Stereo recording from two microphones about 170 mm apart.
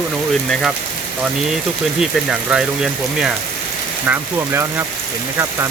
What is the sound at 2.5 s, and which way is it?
Speech, 5° right (ahead or behind).